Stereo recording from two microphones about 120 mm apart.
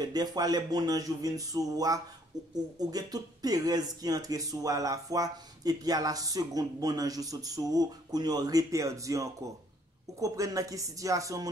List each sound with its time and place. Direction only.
0.0 s speech: 35° right (ahead or behind)